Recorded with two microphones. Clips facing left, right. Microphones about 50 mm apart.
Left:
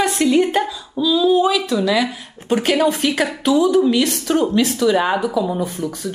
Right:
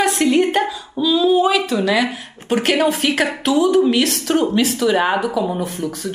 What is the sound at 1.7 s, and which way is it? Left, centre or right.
Speech, right.